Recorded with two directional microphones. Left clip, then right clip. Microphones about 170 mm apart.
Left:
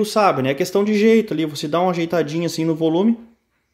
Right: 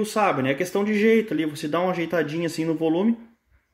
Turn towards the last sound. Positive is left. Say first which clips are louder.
# left 4 dB
turn(degrees=20)  # may be behind; listen again after turning